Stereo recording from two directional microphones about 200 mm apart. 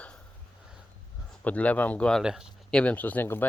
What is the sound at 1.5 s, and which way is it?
Speech, 5° left (ahead or behind).